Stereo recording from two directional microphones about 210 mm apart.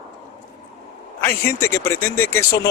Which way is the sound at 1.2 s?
10° left (ahead or behind).